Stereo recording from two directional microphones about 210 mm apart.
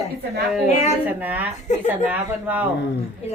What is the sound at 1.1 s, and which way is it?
Speech, 10° right (ahead or behind).